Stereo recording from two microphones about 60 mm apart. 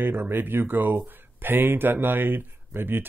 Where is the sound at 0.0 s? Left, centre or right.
Right.